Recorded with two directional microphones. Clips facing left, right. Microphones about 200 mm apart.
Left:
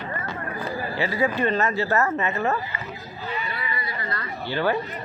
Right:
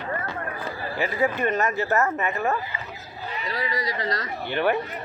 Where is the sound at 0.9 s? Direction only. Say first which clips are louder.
Even; 15° right (ahead or behind).